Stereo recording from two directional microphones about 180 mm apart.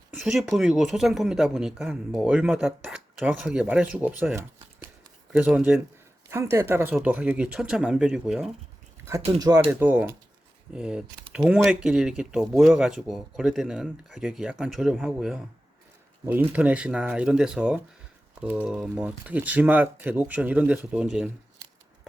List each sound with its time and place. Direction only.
0.1 s speech: centre (ahead or behind)
6.3 s speech: 15° right (ahead or behind)
9.4 s speech: 20° right (ahead or behind); by 21.2 s 5° right (ahead or behind)